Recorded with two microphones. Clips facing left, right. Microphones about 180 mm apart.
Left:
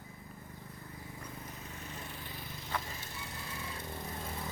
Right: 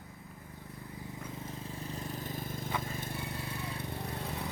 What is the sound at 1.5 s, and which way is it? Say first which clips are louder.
Vehicle: right 5 dB; 30° right (ahead or behind).